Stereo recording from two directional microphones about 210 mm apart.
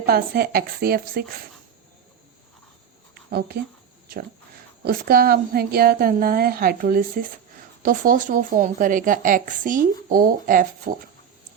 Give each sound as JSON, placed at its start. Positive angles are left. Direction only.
{"t": 0.0, "sound": "a woman's voice", "side_deg": -45}
{"t": 4.9, "sound": "a woman's voice", "side_deg": -45}